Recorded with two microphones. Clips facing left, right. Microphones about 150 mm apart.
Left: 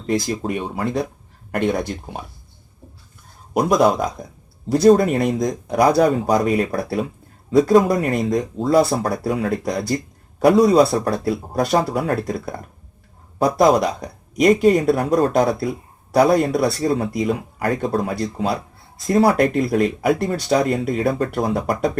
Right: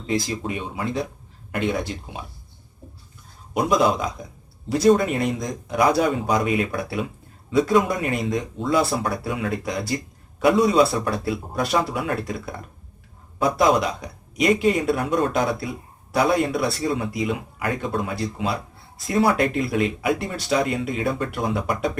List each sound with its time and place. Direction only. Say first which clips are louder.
0.0 s speech: left 4 dB; 50° left (ahead or behind)
3.7 s speech: left 4 dB; 45° left (ahead or behind)
13.6 s speech: left 4 dB; 40° left (ahead or behind)